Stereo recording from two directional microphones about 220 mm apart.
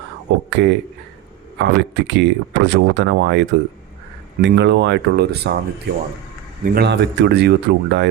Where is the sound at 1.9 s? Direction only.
50° right (ahead or behind).